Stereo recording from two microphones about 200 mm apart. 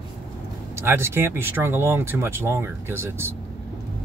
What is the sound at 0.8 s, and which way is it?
Speech, 10° right (ahead or behind).